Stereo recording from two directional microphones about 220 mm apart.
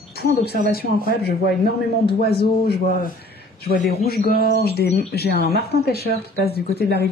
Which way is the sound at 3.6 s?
45° left (ahead or behind).